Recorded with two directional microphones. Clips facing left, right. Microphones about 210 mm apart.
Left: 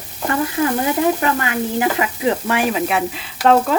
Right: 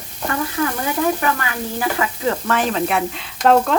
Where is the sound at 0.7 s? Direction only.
25° left (ahead or behind).